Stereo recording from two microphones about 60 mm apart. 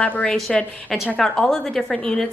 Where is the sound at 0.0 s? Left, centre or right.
Centre.